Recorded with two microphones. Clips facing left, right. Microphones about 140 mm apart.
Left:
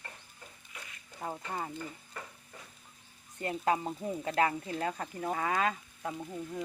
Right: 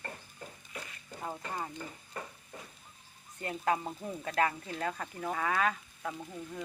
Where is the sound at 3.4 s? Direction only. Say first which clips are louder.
Left 1 dB; 30° left (ahead or behind).